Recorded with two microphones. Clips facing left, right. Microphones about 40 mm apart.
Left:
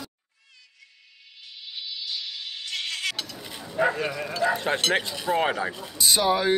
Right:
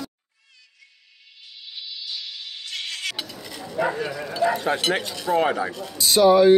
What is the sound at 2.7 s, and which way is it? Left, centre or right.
Music, centre.